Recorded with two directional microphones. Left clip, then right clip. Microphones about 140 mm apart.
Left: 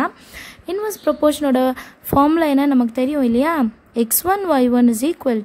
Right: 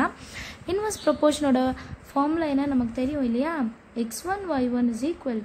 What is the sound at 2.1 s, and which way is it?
Speech, 65° left (ahead or behind).